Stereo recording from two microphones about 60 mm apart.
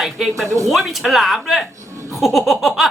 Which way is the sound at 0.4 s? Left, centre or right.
Right.